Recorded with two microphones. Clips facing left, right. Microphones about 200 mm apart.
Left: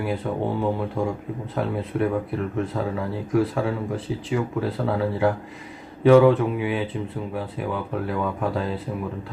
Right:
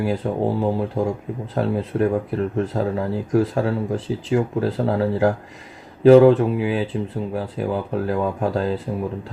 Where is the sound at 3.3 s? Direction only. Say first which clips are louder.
Right 2 dB; 35° right (ahead or behind).